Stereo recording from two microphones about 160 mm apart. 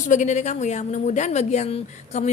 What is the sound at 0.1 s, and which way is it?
A woman's voice, 50° left (ahead or behind).